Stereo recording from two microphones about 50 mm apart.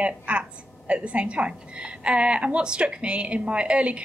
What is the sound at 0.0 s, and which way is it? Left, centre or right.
A woman's voice, right.